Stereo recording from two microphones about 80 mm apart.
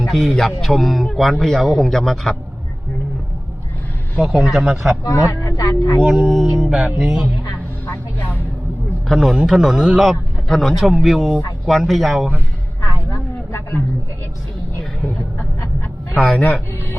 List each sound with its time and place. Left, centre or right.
0.1 s a man's voice: centre
4.2 s a man's voice: centre
5.0 s speech: left
6.0 s a man's voice: centre
6.7 s music: centre
9.0 s a man's voice: centre
13.1 s a sound: left
14.8 s a sound: centre
16.1 s speech: centre